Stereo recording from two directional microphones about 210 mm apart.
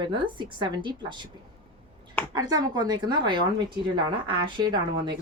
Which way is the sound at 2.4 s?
20° right (ahead or behind).